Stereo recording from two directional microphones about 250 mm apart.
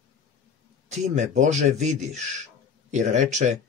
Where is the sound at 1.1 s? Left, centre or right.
Right.